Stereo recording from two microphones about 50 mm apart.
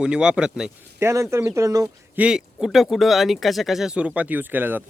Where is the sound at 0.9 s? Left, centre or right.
Right.